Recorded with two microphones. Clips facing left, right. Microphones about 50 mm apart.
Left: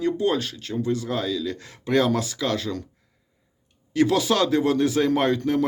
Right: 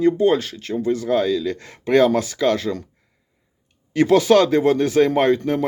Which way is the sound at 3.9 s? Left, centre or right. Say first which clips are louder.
Right 6 dB; right.